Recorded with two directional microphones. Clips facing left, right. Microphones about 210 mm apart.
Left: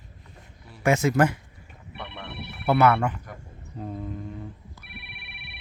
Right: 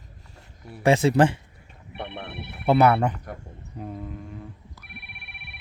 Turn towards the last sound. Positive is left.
turn(degrees=0)  # may be behind; listen again after turning